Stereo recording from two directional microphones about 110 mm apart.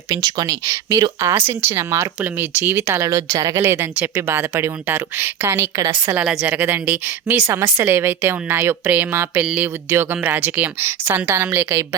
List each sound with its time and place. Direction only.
0.1 s speech: 35° right (ahead or behind)
6.2 s speech: 5° right (ahead or behind); by 11.9 s 25° right (ahead or behind)